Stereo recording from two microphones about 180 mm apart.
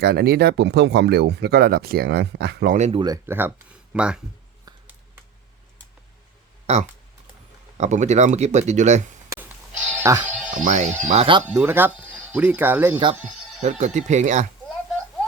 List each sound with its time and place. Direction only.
0.0 s speech: 65° right (ahead or behind)
2.7 s speech: 40° right (ahead or behind)
3.0 s speech: 15° right (ahead or behind)
6.7 s speech: 35° right (ahead or behind)
9.3 s music: 15° right (ahead or behind)
10.0 s speech: 15° right (ahead or behind)
10.5 s speech: 45° right (ahead or behind)
11.4 s speech: 10° right (ahead or behind)
13.6 s speech: 40° right (ahead or behind)